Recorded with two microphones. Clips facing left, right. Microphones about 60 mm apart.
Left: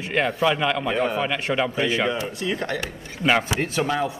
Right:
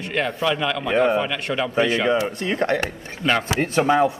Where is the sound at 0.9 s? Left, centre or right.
Right.